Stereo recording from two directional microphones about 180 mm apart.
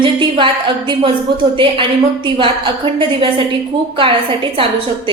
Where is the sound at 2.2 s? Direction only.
30° right (ahead or behind).